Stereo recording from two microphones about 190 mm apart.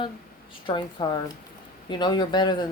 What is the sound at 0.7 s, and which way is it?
Speech, 25° left (ahead or behind).